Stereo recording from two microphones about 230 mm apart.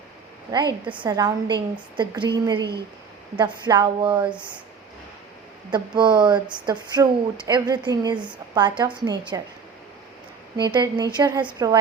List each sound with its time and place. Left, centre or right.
0.5 s speech: centre
5.7 s a woman's voice: centre
10.6 s a woman's voice: centre